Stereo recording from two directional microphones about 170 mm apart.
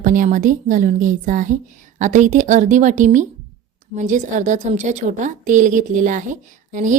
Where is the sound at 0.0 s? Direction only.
50° right (ahead or behind).